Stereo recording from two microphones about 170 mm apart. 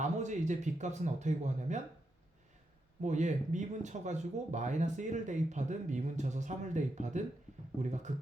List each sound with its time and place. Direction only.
0.0 s speech: 45° right (ahead or behind)
3.0 s speech: 45° right (ahead or behind)